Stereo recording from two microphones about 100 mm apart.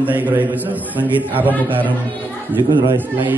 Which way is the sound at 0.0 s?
15° right (ahead or behind).